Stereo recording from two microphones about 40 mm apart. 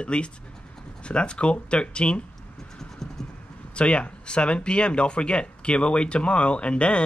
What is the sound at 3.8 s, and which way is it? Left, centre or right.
Speech, left.